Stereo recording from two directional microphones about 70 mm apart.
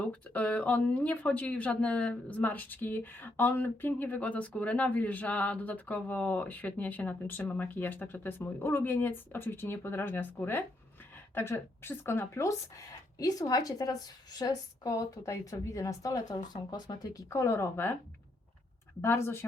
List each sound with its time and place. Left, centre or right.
0.1 s speech: left
13.1 s a woman's voice: left
17.2 s speech: left
19.0 s speech: left